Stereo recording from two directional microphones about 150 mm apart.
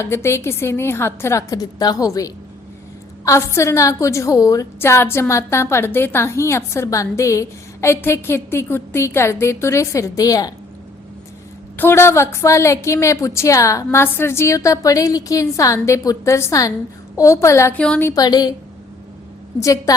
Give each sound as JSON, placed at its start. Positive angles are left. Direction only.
{"t": 0.0, "sound": "a woman's voice", "side_deg": 15}
{"t": 11.8, "sound": "a woman's voice", "side_deg": 15}
{"t": 17.7, "sound": "a woman's voice", "side_deg": 5}
{"t": 18.1, "sound": "a woman's voice", "side_deg": 25}
{"t": 19.6, "sound": "a woman's voice", "side_deg": 20}